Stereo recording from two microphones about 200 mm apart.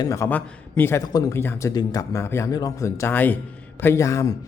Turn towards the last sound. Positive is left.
turn(degrees=15)  # may be behind; listen again after turning